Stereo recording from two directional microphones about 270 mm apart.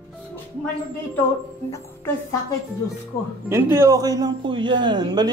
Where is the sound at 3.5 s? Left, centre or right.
Centre.